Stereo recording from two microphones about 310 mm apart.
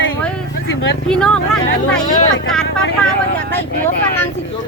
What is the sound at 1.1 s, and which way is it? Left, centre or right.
Speech, centre.